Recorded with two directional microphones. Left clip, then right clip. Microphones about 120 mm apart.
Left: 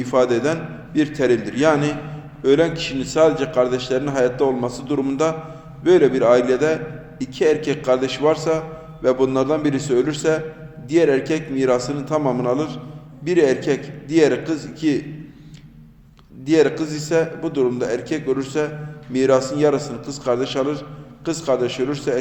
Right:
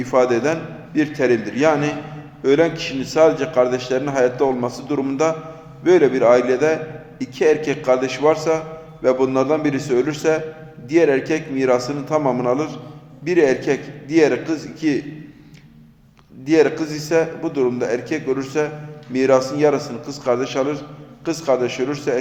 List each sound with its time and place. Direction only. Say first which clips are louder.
0.0 s a man's voice: right 1 dB; 15° left (ahead or behind)
16.5 s a man's voice: right 1 dB; 15° left (ahead or behind)